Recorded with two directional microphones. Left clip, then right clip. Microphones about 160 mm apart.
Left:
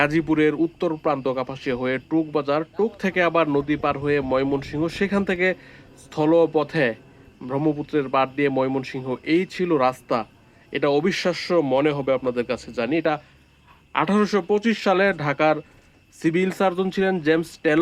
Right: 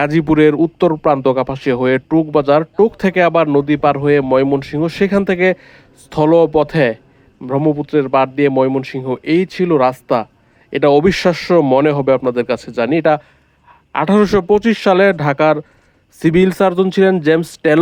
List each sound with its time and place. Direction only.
0.0 s a man's voice: 55° right (ahead or behind)